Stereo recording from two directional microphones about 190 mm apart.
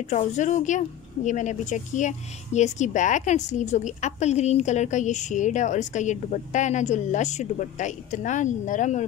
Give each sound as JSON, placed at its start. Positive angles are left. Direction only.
{"t": 0.1, "sound": "speech", "side_deg": 40}